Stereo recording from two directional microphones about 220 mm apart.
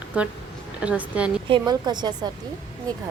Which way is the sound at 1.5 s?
20° right (ahead or behind).